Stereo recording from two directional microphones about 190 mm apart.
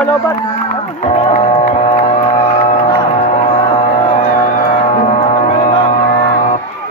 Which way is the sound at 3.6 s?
25° left (ahead or behind).